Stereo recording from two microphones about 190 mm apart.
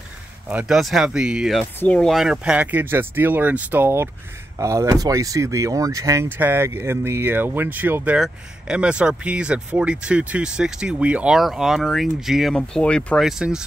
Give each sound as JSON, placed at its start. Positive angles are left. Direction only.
{"t": 0.5, "sound": "speech", "side_deg": -5}